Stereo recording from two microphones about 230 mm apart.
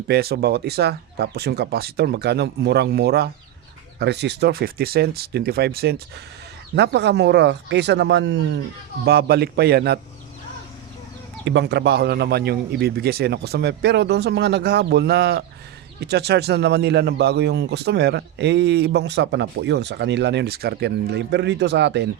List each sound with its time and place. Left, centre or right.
0.1 s speech: right
11.4 s speech: right